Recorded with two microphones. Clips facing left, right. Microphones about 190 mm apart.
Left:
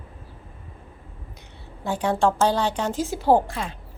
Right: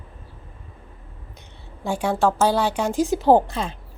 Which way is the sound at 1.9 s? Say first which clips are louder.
Right 1 dB; 10° right (ahead or behind).